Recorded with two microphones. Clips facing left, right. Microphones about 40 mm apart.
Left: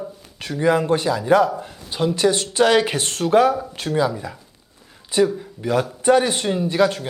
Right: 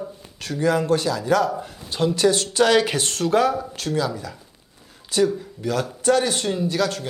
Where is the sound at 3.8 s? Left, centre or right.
Left.